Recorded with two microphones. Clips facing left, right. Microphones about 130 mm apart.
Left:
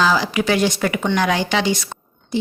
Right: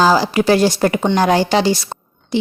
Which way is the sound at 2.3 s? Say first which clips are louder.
Right 4 dB; 85° right.